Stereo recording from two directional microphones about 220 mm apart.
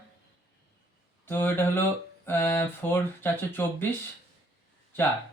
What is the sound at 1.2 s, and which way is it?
Speech, 10° left (ahead or behind).